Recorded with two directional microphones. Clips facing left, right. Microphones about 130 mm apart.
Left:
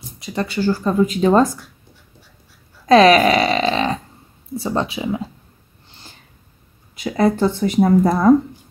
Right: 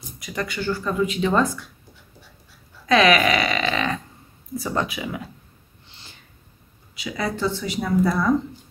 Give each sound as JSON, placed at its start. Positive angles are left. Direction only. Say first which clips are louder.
{"t": 0.2, "sound": "speech", "louder": "left 7 dB", "side_deg": 30}
{"t": 2.9, "sound": "a sound", "louder": "left 6 dB", "side_deg": 35}
{"t": 4.6, "sound": "speech", "louder": "left 4 dB", "side_deg": 30}
{"t": 7.0, "sound": "speech", "louder": "left 9 dB", "side_deg": 45}